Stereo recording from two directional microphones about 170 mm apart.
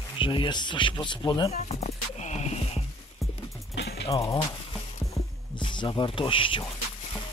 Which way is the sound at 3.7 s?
80° left.